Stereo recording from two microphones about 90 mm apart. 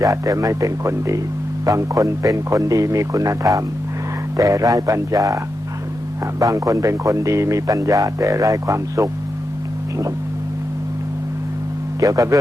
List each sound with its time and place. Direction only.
0.0 s speech: 40° right (ahead or behind)
6.4 s speech: 40° right (ahead or behind)
11.9 s speech: 40° right (ahead or behind)